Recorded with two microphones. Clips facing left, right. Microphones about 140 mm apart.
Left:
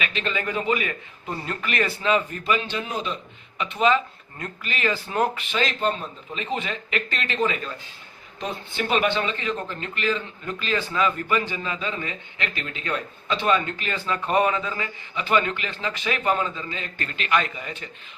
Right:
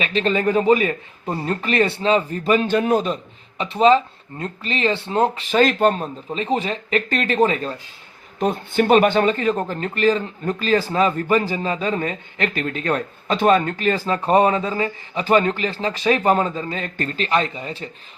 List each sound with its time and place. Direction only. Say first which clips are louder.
0.0 s a man's voice: right 9 dB; 35° right (ahead or behind)
2.5 s a man's voice: right 10 dB; 45° right (ahead or behind)
3.6 s speech: right 6 dB; 30° right (ahead or behind)
5.5 s a man's voice: right 9 dB; 50° right (ahead or behind)
6.3 s a man's voice: right 7 dB; 35° right (ahead or behind)
8.4 s a man's voice: right 10 dB; 50° right (ahead or behind); by 17.8 s 30° right (ahead or behind)